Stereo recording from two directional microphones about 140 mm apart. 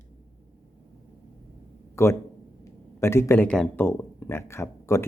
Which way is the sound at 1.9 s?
20° left (ahead or behind).